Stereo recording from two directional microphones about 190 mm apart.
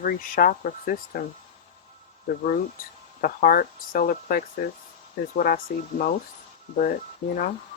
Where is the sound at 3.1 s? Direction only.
50° left (ahead or behind).